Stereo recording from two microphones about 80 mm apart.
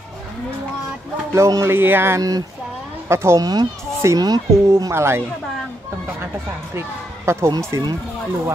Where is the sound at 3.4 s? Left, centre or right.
Right.